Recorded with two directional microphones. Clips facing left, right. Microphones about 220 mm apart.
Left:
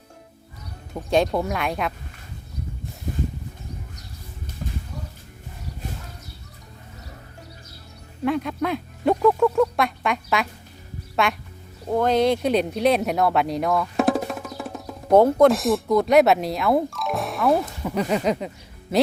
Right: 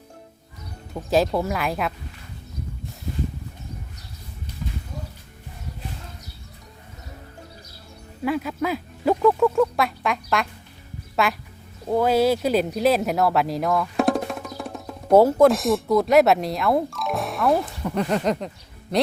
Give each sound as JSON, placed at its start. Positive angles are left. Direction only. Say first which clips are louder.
{"t": 0.9, "sound": "speech", "louder": "even", "side_deg": 0}
{"t": 4.6, "sound": "a sound", "louder": "even", "side_deg": 50}
{"t": 8.2, "sound": "speech", "louder": "left 1 dB", "side_deg": -5}